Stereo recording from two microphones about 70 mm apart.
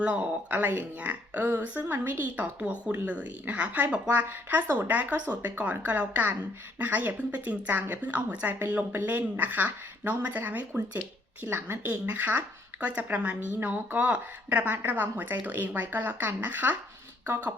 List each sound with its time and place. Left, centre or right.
0.0 s a woman's voice: right